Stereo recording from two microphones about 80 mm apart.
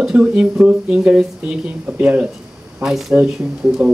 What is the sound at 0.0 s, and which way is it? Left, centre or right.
Speech, centre.